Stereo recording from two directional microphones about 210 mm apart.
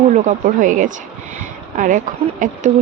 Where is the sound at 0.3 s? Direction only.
35° right (ahead or behind).